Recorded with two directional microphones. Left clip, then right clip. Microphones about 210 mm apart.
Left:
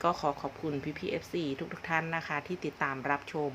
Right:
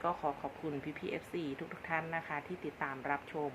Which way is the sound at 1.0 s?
10° left (ahead or behind).